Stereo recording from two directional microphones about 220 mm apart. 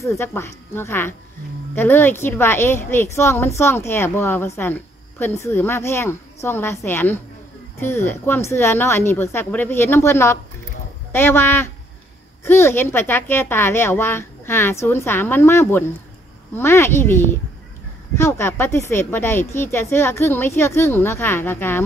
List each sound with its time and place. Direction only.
0.0 s speech: 10° left (ahead or behind)